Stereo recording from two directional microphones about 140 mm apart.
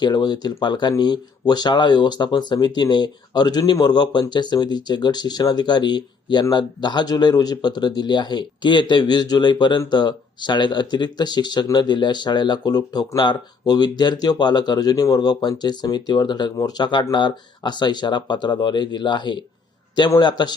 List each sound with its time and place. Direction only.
0.0 s speech: 30° left (ahead or behind)